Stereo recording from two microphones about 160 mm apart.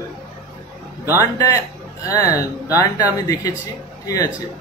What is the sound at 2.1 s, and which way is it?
A man's voice, 20° left (ahead or behind).